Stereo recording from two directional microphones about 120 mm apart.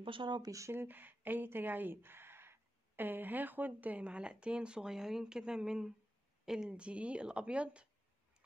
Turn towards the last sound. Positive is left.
turn(degrees=-10)  # may be behind; listen again after turning